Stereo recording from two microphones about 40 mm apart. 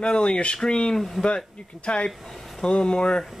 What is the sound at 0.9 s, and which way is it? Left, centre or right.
Speech, centre.